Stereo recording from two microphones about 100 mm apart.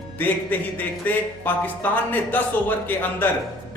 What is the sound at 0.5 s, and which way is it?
Speech, 20° left (ahead or behind).